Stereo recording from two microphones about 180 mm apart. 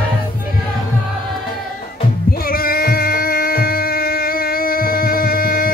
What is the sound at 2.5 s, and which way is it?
Music, 55° left (ahead or behind).